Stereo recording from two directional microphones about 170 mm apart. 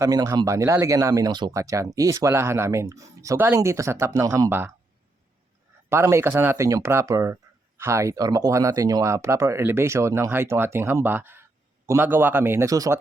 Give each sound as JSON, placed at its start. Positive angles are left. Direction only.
{"t": 0.0, "sound": "speech", "side_deg": -20}
{"t": 5.9, "sound": "speech", "side_deg": -15}